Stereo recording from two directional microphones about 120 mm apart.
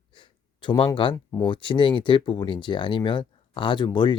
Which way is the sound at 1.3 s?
40° left (ahead or behind).